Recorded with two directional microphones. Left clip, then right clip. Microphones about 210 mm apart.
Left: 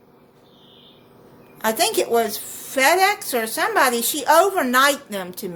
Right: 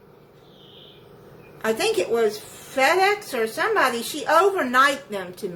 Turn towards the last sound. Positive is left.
turn(degrees=45)  # may be behind; listen again after turning